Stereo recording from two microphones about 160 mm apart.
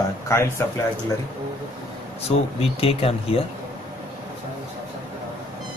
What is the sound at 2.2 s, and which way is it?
Speech, 40° left (ahead or behind).